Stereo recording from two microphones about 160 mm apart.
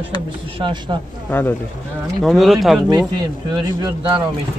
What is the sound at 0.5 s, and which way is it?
Speech, 30° right (ahead or behind).